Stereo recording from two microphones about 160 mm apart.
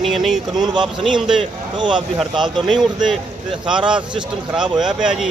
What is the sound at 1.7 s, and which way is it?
Speech, 30° right (ahead or behind).